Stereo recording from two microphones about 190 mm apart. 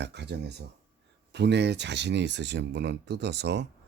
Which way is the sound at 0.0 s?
65° right (ahead or behind).